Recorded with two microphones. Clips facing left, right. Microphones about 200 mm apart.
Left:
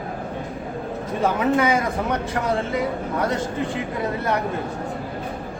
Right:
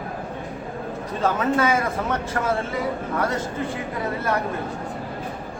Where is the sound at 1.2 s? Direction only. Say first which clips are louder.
Left 1 dB; 15° left (ahead or behind).